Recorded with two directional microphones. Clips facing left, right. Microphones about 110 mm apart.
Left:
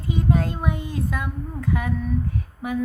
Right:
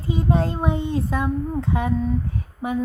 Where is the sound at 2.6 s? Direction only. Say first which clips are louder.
Right 2 dB; 30° right (ahead or behind).